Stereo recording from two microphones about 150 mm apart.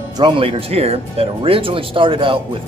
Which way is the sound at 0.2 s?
40° right (ahead or behind).